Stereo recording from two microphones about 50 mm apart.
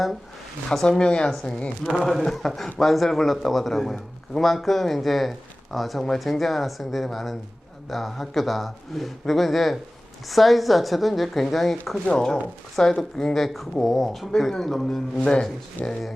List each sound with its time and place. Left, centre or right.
0.7 s speech: centre
1.5 s a man's voice: centre
1.9 s a man's voice: centre
12.0 s a man's voice: centre
15.9 s a man's voice: centre